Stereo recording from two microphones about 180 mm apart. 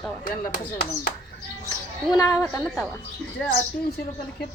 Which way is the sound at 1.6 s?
20° left (ahead or behind).